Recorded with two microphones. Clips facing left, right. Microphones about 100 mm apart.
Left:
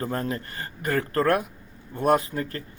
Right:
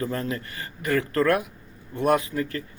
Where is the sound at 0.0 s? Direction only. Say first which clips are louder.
Even; 40° left (ahead or behind).